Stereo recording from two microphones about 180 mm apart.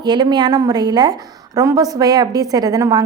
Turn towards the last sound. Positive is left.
turn(degrees=-20)  # may be behind; listen again after turning